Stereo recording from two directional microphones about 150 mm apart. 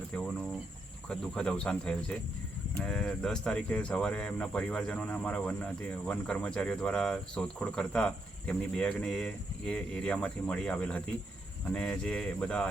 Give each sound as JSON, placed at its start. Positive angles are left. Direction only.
{"t": 0.1, "sound": "speech", "side_deg": 5}